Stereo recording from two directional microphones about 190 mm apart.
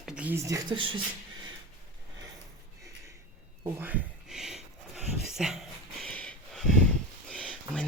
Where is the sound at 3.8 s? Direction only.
10° right (ahead or behind).